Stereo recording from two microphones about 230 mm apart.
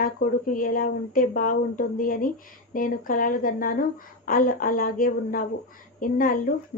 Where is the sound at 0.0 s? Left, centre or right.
Left.